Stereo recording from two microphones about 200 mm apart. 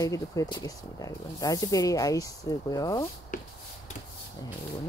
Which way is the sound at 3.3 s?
40° left (ahead or behind).